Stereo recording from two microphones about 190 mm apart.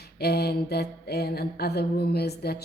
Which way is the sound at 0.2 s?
55° left (ahead or behind).